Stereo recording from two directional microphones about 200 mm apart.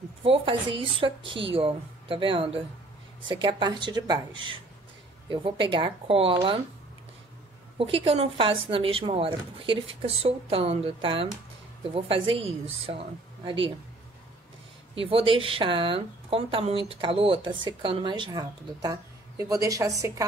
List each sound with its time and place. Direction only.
0.2 s speech: 25° right (ahead or behind)
7.7 s speech: 25° right (ahead or behind)
15.0 s speech: 25° right (ahead or behind)